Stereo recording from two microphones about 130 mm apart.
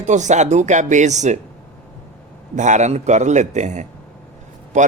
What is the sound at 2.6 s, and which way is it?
A man's voice, 65° right (ahead or behind).